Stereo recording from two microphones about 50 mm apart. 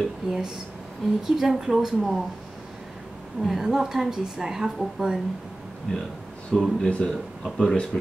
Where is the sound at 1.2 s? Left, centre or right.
Centre.